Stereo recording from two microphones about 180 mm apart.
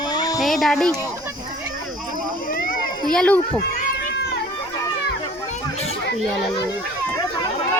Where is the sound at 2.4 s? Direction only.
50° left (ahead or behind).